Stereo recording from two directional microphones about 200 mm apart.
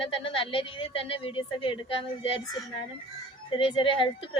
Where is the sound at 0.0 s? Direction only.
25° left (ahead or behind).